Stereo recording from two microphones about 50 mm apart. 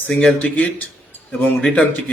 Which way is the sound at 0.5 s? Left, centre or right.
Left.